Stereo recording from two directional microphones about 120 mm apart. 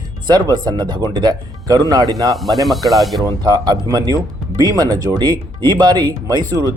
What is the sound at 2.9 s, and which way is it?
Speech, centre (ahead or behind).